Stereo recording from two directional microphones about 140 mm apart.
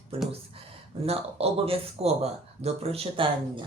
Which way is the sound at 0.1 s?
45° right (ahead or behind).